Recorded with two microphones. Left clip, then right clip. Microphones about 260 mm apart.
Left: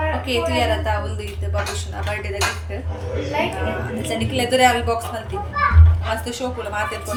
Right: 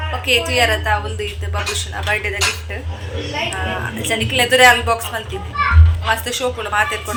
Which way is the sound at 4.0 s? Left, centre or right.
Centre.